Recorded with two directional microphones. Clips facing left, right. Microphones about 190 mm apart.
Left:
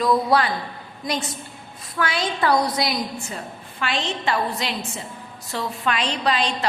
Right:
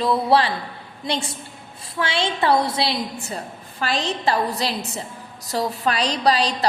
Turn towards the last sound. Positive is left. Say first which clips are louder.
# right 3 dB
turn(degrees=-35)  # may be behind; listen again after turning